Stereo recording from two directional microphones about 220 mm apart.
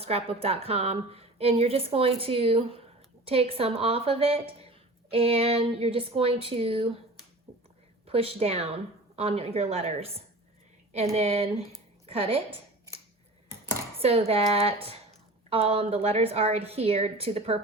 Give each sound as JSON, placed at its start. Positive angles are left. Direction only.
{"t": 0.0, "sound": "a woman's voice", "side_deg": -25}
{"t": 8.0, "sound": "a woman's voice", "side_deg": -25}
{"t": 14.0, "sound": "a woman's voice", "side_deg": -25}